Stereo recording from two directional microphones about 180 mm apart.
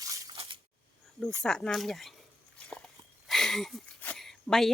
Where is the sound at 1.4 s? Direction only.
5° left (ahead or behind).